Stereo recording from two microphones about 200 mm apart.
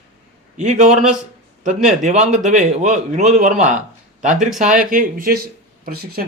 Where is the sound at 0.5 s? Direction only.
35° right (ahead or behind).